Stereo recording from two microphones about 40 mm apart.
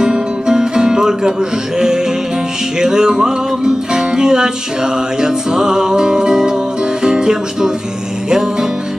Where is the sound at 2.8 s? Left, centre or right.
Centre.